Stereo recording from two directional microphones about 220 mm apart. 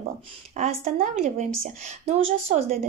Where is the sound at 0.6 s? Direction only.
30° right (ahead or behind).